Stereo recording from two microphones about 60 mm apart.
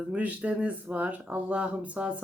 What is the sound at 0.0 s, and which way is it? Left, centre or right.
Speech, right.